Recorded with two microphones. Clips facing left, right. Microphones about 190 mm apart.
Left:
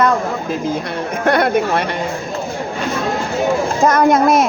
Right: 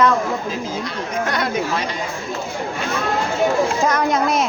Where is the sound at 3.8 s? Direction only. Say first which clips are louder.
Left 6 dB; 50° left (ahead or behind).